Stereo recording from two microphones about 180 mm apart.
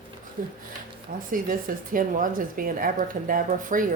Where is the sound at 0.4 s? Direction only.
50° right (ahead or behind).